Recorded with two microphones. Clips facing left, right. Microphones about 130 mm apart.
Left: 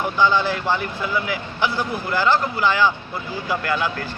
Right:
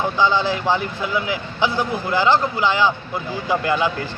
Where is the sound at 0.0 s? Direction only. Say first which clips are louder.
Even; 20° right (ahead or behind).